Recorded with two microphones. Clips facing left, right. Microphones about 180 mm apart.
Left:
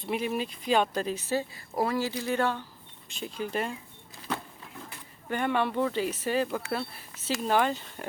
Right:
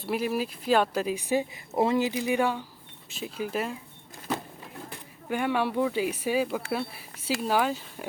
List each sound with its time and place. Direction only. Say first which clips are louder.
0.0 s speech: right 2 dB; 5° right (ahead or behind)
5.3 s speech: right 1 dB; 5° right (ahead or behind)